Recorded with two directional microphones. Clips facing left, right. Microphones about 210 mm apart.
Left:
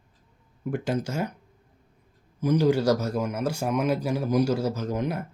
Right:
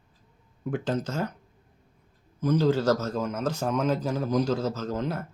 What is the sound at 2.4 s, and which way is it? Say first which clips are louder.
A man's voice: left 1 dB; 10° left (ahead or behind).